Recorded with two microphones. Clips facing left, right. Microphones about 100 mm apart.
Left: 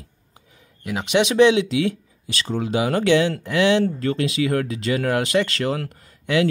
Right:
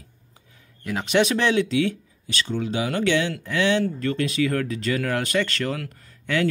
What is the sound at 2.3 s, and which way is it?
Speech, 35° left (ahead or behind).